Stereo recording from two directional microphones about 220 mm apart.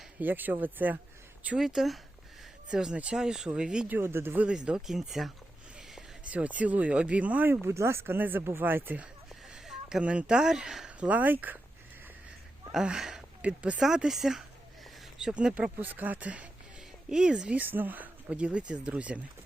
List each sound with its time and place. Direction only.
0.2 s speech: 10° right (ahead or behind)
12.7 s speech: 5° right (ahead or behind)